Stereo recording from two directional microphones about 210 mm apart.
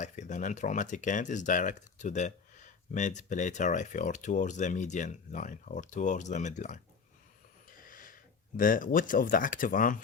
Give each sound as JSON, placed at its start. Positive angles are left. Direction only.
{"t": 0.0, "sound": "speech", "side_deg": 35}
{"t": 7.8, "sound": "a sound", "side_deg": 40}
{"t": 8.5, "sound": "speech", "side_deg": 40}